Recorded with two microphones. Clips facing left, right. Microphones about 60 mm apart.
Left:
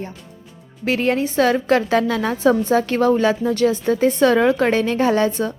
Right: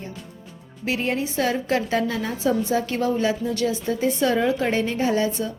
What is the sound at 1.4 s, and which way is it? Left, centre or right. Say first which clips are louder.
A woman's voice: left 7 dB; left.